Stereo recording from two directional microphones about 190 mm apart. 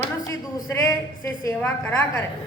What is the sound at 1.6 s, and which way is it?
Speech, 5° left (ahead or behind).